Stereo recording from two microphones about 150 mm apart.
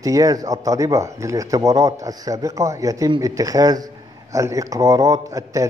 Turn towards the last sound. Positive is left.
turn(degrees=-20)  # may be behind; listen again after turning